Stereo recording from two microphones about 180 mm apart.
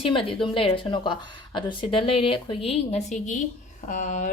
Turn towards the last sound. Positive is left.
turn(degrees=45)  # may be behind; listen again after turning